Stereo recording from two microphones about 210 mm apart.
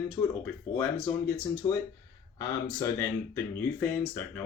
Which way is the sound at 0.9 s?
25° left (ahead or behind).